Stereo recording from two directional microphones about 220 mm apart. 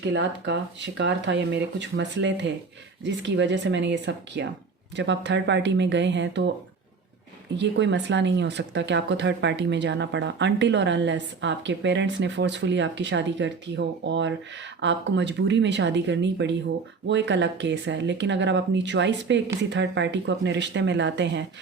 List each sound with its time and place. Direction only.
0.0 s speech: 55° right (ahead or behind)
7.5 s speech: 55° right (ahead or behind)